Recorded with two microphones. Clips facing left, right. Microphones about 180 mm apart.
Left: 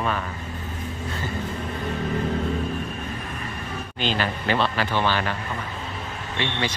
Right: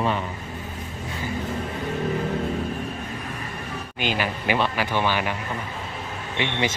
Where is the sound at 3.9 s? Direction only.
10° right (ahead or behind).